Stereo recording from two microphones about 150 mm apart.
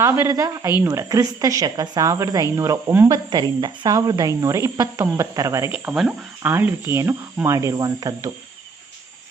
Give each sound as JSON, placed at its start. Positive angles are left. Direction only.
{"t": 0.0, "sound": "speech", "side_deg": -20}